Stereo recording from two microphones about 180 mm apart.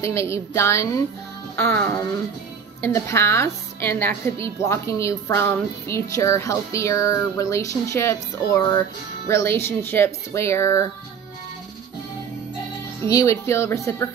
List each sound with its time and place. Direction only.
0.0 s a woman's voice: 15° left (ahead or behind)
13.0 s a woman's voice: 15° left (ahead or behind)